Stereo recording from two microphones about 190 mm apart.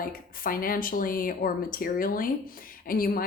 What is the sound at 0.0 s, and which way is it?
A woman's voice, 50° left (ahead or behind).